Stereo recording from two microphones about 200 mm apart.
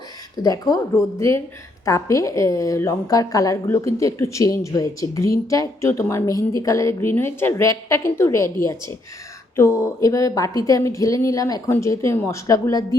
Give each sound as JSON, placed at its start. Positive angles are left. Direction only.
{"t": 0.4, "sound": "a woman's voice", "side_deg": 20}